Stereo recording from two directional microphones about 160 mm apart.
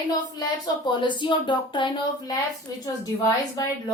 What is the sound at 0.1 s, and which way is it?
A woman's voice, 25° left (ahead or behind).